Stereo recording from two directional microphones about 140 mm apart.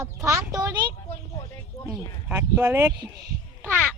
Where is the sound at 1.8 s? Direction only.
15° right (ahead or behind).